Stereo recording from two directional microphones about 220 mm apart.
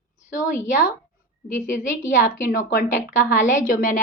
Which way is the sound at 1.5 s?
35° left (ahead or behind).